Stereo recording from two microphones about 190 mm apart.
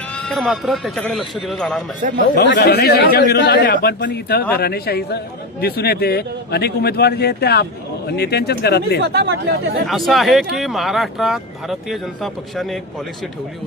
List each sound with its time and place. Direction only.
0.1 s speech: 5° left (ahead or behind)
2.3 s a man's voice: 60° left (ahead or behind)
9.1 s speech: 65° right (ahead or behind)
10.1 s speech: centre (ahead or behind)